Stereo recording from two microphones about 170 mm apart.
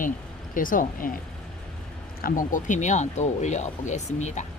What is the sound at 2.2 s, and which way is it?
Speech, 50° left (ahead or behind).